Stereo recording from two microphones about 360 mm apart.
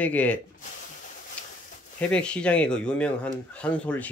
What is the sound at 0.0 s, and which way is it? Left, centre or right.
Speech, centre.